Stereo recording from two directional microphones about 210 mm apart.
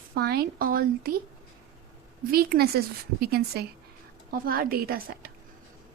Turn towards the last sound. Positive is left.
turn(degrees=-45)  # may be behind; listen again after turning